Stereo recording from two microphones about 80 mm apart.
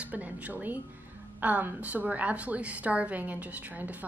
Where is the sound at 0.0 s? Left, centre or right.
Centre.